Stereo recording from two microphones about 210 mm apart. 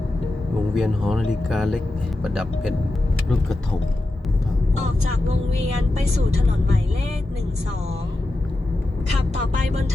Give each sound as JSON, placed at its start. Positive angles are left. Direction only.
{"t": 0.7, "sound": "speech", "side_deg": 0}